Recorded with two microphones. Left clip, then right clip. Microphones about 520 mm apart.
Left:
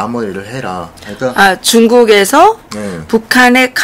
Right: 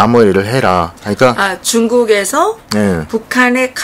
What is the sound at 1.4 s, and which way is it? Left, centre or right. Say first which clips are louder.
Speech: left 6 dB; left.